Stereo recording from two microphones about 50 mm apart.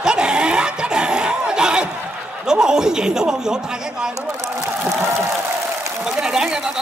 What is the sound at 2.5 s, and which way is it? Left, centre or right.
A man's voice, centre.